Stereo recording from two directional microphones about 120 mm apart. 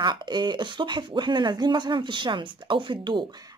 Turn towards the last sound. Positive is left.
turn(degrees=-40)  # may be behind; listen again after turning